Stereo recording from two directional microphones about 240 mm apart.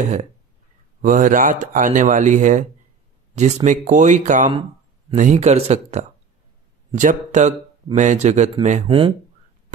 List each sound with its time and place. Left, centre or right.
0.0 s speech: right